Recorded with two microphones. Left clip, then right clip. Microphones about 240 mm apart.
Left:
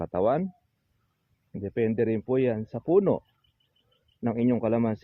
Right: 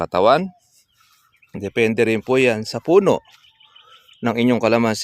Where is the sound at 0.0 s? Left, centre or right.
Right.